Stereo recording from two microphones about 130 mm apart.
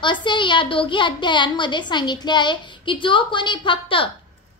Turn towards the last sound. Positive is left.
turn(degrees=40)  # may be behind; listen again after turning